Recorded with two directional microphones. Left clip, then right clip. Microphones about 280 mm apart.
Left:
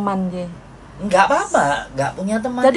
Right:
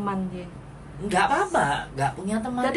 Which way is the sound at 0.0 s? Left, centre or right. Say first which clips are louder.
Left 8 dB; centre.